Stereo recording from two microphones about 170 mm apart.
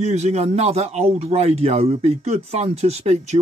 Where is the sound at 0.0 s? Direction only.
40° right (ahead or behind).